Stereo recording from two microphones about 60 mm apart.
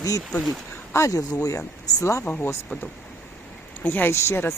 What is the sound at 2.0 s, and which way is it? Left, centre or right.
Speech, left.